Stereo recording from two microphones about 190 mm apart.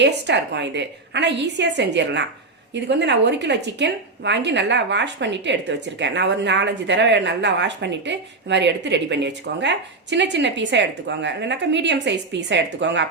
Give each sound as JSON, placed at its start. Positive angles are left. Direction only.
{"t": 0.0, "sound": "a woman's voice", "side_deg": -65}